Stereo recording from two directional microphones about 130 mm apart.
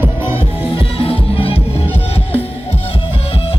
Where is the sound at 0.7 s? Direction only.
45° left (ahead or behind).